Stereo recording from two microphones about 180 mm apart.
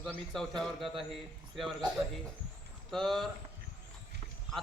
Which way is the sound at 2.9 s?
Centre (ahead or behind).